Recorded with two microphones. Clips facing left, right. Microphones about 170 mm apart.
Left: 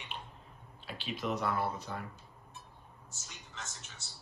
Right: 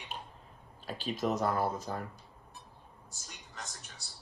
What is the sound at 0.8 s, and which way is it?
Speech, 40° right (ahead or behind).